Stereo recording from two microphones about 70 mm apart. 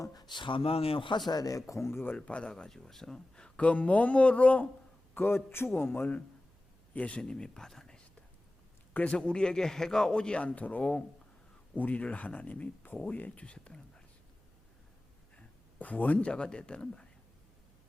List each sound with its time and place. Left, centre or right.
0.0 s speech: left
1.3 s speech: left
2.1 s speech: centre
5.1 s speech: left
7.2 s speech: centre
8.9 s speech: centre
15.8 s speech: left